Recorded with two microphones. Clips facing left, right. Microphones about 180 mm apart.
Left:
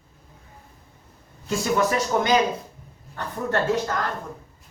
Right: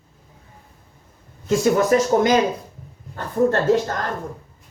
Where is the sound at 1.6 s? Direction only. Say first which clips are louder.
Right 5 dB; 40° right (ahead or behind).